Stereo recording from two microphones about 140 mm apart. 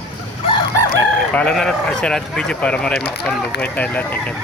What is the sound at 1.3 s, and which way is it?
Speech, 5° left (ahead or behind).